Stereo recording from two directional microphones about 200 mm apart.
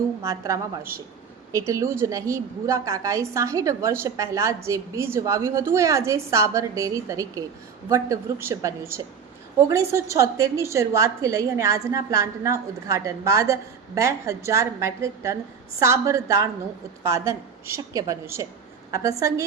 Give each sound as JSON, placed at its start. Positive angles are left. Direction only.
{"t": 0.2, "sound": "a woman's voice", "side_deg": -15}